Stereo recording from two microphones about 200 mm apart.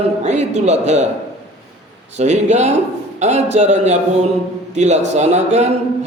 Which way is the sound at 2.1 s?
35° right (ahead or behind).